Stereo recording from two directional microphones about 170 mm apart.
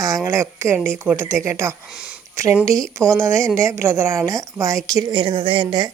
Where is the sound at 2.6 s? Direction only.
20° right (ahead or behind).